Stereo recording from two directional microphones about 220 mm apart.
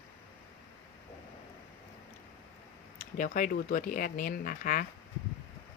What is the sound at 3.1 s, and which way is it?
Speech, 40° left (ahead or behind).